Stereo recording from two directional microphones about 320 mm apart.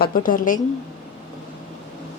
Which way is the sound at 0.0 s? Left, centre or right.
Left.